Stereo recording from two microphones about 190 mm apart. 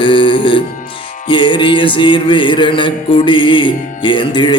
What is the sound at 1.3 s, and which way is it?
Mantra, 25° left (ahead or behind).